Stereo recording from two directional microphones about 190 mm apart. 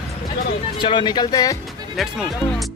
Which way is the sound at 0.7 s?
25° left (ahead or behind).